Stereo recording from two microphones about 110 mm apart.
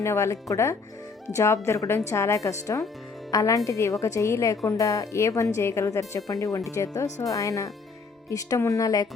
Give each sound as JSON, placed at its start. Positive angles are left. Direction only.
{"t": 0.0, "sound": "a woman's voice", "side_deg": 25}